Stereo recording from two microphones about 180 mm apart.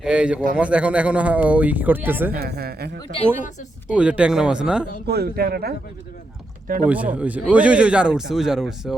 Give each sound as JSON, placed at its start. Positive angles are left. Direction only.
{"t": 0.0, "sound": "speech", "side_deg": -5}
{"t": 2.3, "sound": "speech", "side_deg": -60}
{"t": 3.9, "sound": "speech", "side_deg": -5}
{"t": 5.0, "sound": "speech", "side_deg": -60}
{"t": 6.8, "sound": "speech", "side_deg": -10}